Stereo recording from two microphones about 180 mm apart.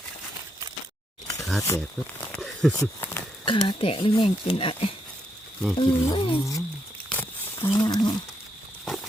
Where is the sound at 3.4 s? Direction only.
30° left (ahead or behind).